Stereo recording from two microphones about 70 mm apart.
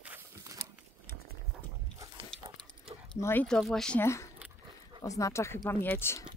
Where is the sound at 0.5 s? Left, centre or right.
Right.